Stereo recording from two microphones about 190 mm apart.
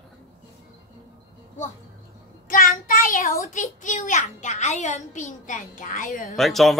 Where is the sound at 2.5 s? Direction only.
50° left (ahead or behind).